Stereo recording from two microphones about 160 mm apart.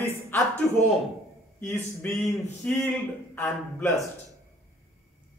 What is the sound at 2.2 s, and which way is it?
Speech, centre (ahead or behind).